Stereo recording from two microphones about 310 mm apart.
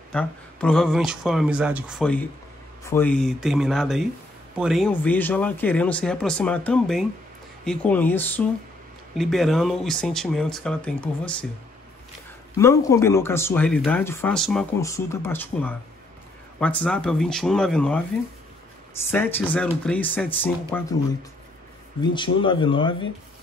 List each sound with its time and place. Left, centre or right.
0.1 s speech: centre
12.5 s speech: centre
19.0 s speech: centre
22.1 s speech: centre